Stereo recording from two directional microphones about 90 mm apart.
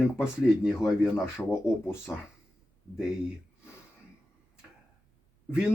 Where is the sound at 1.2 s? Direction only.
25° left (ahead or behind).